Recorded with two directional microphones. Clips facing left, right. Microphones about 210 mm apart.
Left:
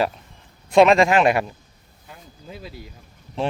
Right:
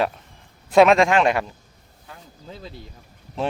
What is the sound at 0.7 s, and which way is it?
Speech, centre (ahead or behind).